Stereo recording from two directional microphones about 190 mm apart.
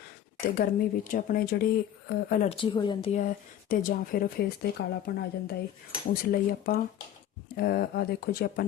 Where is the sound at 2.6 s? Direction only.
25° left (ahead or behind).